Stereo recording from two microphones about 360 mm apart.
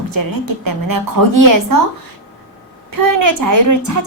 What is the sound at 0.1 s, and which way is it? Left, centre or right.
A woman's voice, right.